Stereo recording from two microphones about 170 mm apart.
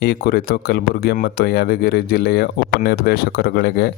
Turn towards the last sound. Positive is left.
turn(degrees=70)  # may be behind; listen again after turning